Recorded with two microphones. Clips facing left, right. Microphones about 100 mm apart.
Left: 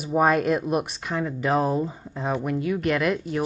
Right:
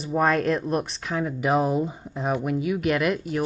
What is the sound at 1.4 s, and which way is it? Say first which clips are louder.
Speech: right 1 dB; 15° right (ahead or behind).